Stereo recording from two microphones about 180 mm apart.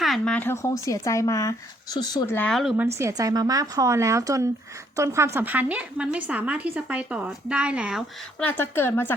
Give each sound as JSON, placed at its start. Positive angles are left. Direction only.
{"t": 0.0, "sound": "a woman's voice", "side_deg": 5}
{"t": 2.3, "sound": "speech", "side_deg": 5}
{"t": 2.7, "sound": "a woman's voice", "side_deg": -15}
{"t": 8.4, "sound": "a woman's voice", "side_deg": 10}